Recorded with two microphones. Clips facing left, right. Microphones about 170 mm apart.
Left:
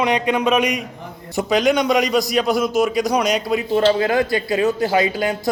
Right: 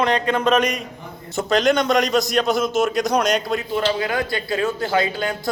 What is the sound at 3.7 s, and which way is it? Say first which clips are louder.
Speech: left 7 dB; 30° left (ahead or behind).